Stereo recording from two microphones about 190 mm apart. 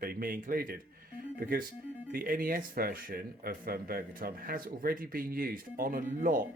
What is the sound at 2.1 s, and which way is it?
Speech, 50° right (ahead or behind).